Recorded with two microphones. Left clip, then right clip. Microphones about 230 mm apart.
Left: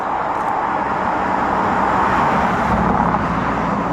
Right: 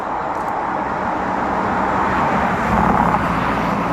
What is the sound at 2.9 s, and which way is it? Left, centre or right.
Vehicle, right.